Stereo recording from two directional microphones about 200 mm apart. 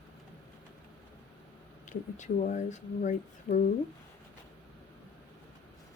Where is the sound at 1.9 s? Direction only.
40° left (ahead or behind).